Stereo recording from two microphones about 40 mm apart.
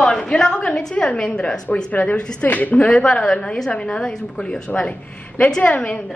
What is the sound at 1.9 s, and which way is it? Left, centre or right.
A woman's voice, left.